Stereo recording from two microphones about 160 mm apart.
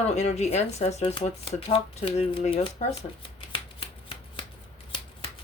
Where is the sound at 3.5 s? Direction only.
35° left (ahead or behind).